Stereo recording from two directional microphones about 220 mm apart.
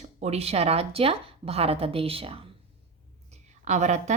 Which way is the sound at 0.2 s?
30° right (ahead or behind).